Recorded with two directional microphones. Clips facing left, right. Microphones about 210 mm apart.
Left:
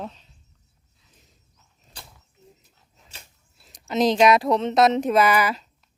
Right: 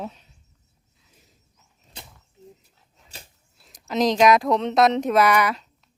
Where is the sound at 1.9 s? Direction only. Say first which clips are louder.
Right 2 dB; 25° right (ahead or behind).